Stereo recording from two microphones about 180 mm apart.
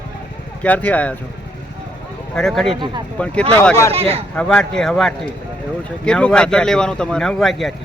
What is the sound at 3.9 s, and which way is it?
Speech, 35° right (ahead or behind).